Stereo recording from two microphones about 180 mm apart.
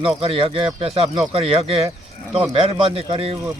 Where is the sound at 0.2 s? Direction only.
30° right (ahead or behind).